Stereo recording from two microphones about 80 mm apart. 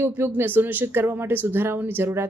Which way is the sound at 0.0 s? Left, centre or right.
Right.